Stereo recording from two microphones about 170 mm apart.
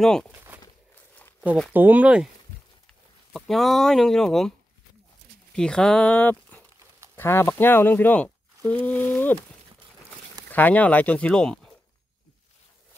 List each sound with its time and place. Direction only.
0.0 s speech: 5° left (ahead or behind)
0.3 s walk: 10° right (ahead or behind)
1.4 s speech: 10° right (ahead or behind)
3.3 s speech: centre (ahead or behind)
10.5 s speech: 10° left (ahead or behind)